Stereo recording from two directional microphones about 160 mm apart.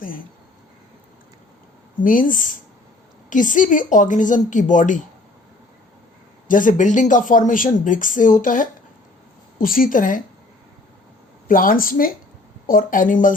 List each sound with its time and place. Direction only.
2.0 s a woman's voice: 60° left (ahead or behind)
6.5 s speech: 55° left (ahead or behind)
11.4 s speech: 60° left (ahead or behind)